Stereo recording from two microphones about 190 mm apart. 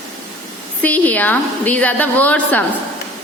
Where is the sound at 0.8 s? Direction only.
10° left (ahead or behind).